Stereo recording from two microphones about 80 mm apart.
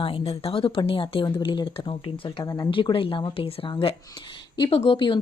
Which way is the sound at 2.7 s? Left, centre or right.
Left.